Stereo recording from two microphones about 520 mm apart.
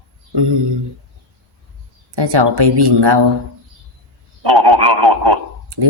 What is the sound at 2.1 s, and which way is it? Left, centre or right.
A woman's voice, right.